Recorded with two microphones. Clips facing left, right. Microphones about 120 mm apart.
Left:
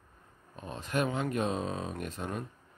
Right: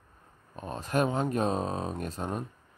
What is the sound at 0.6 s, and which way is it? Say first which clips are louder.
Speech: right 4 dB; 40° right (ahead or behind).